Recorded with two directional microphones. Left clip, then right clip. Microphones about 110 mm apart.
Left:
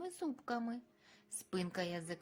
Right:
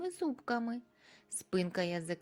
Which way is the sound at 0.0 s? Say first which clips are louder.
Right 6 dB; 35° right (ahead or behind).